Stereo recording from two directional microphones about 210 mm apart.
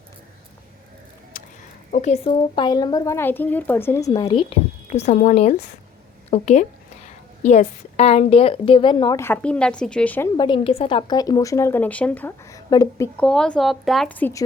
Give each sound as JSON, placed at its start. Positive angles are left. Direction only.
{"t": 1.3, "sound": "a sound", "side_deg": 40}
{"t": 1.9, "sound": "speech", "side_deg": 35}
{"t": 4.1, "sound": "a woman's voice", "side_deg": 25}
{"t": 10.3, "sound": "speech", "side_deg": 20}
{"t": 13.1, "sound": "speech", "side_deg": 5}